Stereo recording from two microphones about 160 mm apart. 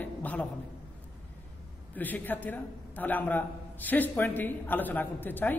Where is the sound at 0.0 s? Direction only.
10° left (ahead or behind).